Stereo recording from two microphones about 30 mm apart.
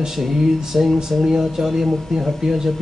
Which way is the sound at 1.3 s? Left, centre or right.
Centre.